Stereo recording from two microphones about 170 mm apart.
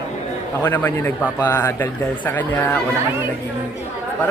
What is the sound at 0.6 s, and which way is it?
A man's voice, 10° left (ahead or behind).